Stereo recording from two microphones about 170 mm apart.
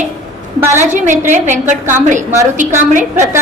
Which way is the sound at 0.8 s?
45° right (ahead or behind).